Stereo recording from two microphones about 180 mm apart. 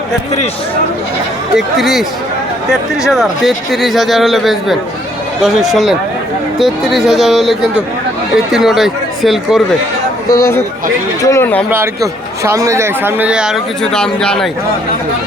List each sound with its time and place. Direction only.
1.5 s a man's voice: centre (ahead or behind)
3.1 s a man's voice: centre (ahead or behind)
10.2 s speech: 15° left (ahead or behind)
11.7 s speech: 15° right (ahead or behind); by 14.5 s 5° left (ahead or behind)